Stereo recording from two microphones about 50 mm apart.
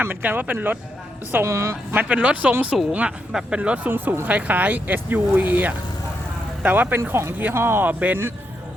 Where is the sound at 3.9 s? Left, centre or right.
Right.